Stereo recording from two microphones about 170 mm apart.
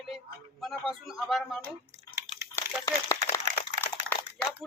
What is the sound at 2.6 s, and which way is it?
Crumpling, 15° left (ahead or behind).